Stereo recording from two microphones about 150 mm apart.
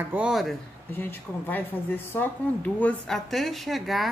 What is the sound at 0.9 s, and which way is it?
A woman's voice, 15° left (ahead or behind).